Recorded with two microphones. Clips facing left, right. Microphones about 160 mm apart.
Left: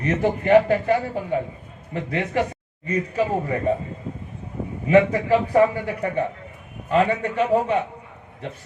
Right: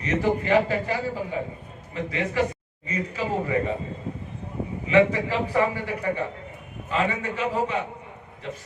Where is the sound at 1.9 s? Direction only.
55° left (ahead or behind).